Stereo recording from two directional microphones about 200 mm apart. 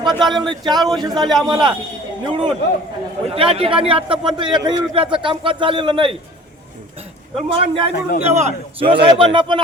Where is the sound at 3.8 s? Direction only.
25° right (ahead or behind).